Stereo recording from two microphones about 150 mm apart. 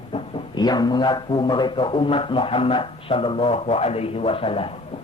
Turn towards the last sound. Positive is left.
turn(degrees=40)  # may be behind; listen again after turning